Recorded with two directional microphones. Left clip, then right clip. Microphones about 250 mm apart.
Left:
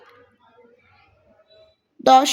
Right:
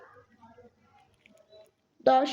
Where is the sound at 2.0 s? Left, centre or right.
Left.